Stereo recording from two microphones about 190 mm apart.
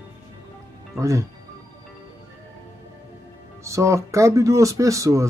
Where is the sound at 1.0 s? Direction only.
15° right (ahead or behind).